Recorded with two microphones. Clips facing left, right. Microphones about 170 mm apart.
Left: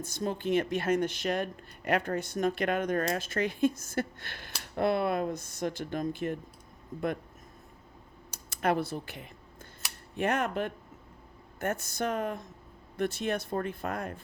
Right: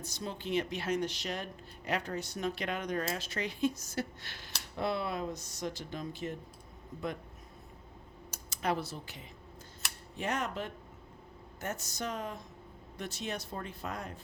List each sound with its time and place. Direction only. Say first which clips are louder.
0.0 s speech: left 7 dB; 50° left (ahead or behind)
8.4 s speech: left 5 dB; 55° left (ahead or behind)